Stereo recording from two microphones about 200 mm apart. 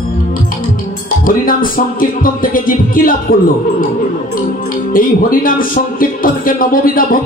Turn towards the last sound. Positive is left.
turn(degrees=45)  # may be behind; listen again after turning